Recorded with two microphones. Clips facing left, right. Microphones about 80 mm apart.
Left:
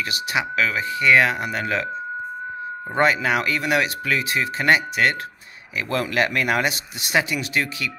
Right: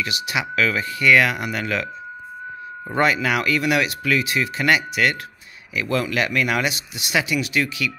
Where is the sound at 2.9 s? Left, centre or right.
Left.